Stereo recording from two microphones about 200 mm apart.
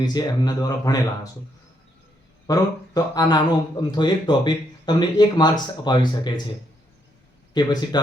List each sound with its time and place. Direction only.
0.0 s speech: 20° left (ahead or behind)
2.5 s speech: 20° left (ahead or behind)
7.6 s speech: 20° left (ahead or behind)